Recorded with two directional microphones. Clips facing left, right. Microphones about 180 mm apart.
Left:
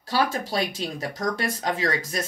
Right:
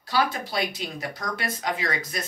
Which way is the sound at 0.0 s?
40° left (ahead or behind).